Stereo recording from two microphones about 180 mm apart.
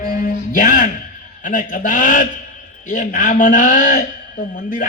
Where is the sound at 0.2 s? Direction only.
45° left (ahead or behind).